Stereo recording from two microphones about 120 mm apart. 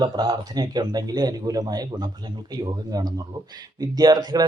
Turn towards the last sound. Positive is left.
turn(degrees=-35)  # may be behind; listen again after turning